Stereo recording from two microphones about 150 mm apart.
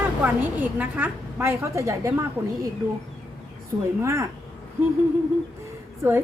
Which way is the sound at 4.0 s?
20° right (ahead or behind).